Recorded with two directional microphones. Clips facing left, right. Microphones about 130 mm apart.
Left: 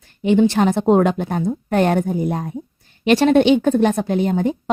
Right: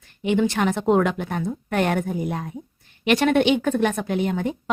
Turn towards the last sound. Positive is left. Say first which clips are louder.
# left 5 dB
turn(degrees=35)  # may be behind; listen again after turning